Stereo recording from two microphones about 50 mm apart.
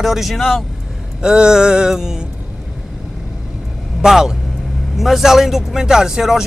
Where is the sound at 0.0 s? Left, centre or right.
Centre.